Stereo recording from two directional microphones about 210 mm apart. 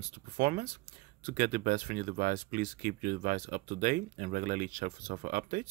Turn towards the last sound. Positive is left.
turn(degrees=-40)  # may be behind; listen again after turning